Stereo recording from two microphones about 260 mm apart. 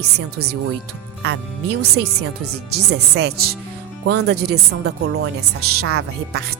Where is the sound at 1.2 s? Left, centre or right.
Right.